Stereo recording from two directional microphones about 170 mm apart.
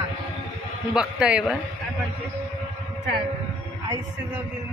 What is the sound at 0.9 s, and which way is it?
Speech, 5° right (ahead or behind).